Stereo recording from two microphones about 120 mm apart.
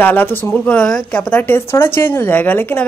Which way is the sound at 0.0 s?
15° left (ahead or behind).